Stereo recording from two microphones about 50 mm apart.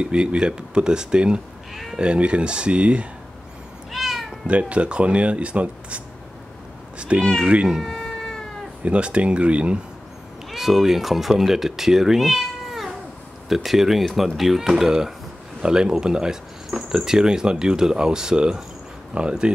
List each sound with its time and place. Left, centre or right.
0.0 s speech: centre
1.7 s sheep: centre
2.0 s speech: right
3.9 s cat: centre
4.5 s speech: right
7.0 s cat: right
7.8 s cat: centre
8.8 s speech: right
10.5 s speech: centre